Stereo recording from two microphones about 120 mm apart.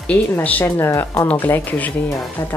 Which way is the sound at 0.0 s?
10° left (ahead or behind).